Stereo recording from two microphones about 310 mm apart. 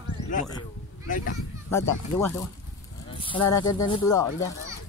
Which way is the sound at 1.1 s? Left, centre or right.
Left.